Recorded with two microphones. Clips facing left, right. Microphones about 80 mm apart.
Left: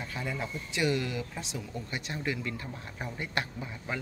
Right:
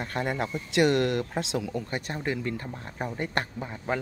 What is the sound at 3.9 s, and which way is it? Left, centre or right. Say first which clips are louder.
Speech: right 7 dB; right.